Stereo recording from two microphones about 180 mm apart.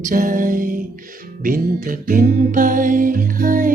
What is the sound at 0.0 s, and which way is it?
Music, 45° right (ahead or behind).